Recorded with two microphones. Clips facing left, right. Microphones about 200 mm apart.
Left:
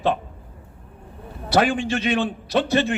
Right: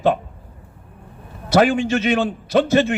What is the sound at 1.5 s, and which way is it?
A man's voice, 40° right (ahead or behind).